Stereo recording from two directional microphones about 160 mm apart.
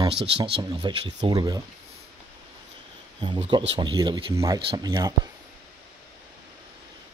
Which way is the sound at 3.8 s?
25° right (ahead or behind).